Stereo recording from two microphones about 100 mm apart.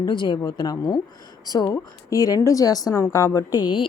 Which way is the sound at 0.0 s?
50° left (ahead or behind).